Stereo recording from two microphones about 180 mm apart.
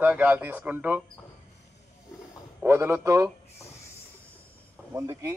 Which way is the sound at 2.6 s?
15° right (ahead or behind).